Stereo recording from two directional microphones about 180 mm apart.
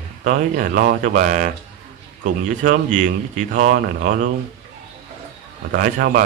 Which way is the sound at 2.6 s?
45° right (ahead or behind).